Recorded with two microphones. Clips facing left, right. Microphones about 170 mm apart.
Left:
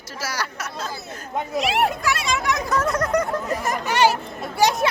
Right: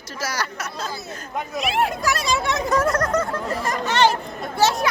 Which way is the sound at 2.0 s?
40° right (ahead or behind).